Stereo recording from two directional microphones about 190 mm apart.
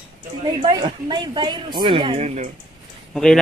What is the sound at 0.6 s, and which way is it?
Speech, 20° right (ahead or behind).